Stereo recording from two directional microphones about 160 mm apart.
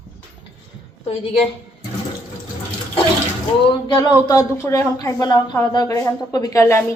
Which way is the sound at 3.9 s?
30° left (ahead or behind).